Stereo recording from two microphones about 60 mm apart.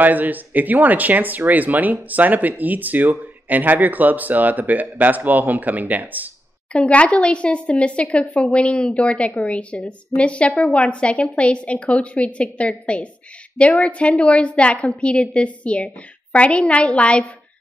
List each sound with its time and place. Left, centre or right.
0.0 s speech: right
6.7 s a woman's voice: left